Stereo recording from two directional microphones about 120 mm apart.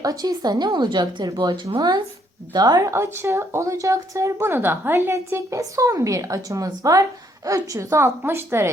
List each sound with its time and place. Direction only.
0.0 s speech: 30° right (ahead or behind)
2.9 s speech: 20° right (ahead or behind)